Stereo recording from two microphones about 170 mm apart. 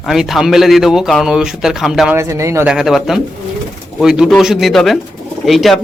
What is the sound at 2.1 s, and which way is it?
Speech, 15° right (ahead or behind).